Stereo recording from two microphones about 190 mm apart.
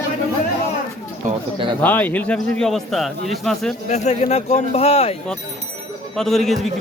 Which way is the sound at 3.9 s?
35° left (ahead or behind).